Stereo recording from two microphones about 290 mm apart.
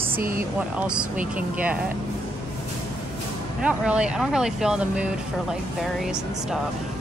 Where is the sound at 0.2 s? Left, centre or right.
Right.